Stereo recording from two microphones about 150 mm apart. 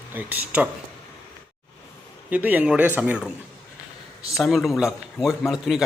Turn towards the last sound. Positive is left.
turn(degrees=0)  # may be behind; listen again after turning